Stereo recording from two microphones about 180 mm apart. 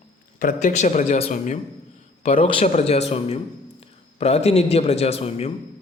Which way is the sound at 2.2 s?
30° left (ahead or behind).